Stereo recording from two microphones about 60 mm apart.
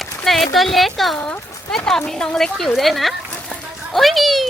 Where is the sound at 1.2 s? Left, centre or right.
Centre.